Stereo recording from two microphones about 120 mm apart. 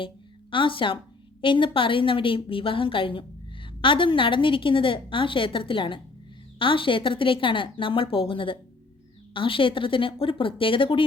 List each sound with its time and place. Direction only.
0.5 s a woman's voice: 45° left (ahead or behind)